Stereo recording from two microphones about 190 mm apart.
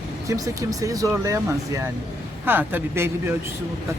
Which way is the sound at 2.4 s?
10° right (ahead or behind).